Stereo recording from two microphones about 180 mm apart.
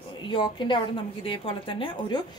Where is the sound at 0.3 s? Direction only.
25° left (ahead or behind).